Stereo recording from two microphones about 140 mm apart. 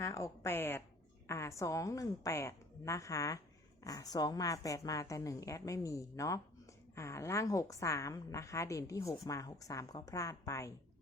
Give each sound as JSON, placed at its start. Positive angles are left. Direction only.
{"t": 0.0, "sound": "a woman's voice", "side_deg": 20}